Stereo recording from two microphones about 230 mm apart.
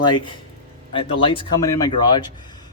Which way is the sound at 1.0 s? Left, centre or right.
Left.